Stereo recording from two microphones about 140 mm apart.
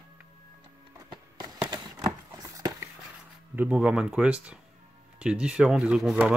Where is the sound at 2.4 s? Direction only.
25° right (ahead or behind).